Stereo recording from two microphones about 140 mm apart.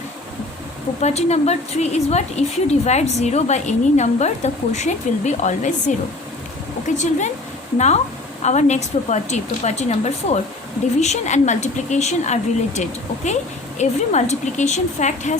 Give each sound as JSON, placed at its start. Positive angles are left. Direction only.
{"t": 1.0, "sound": "a woman's voice", "side_deg": 50}
{"t": 6.8, "sound": "speech", "side_deg": 60}
{"t": 8.4, "sound": "speech", "side_deg": 55}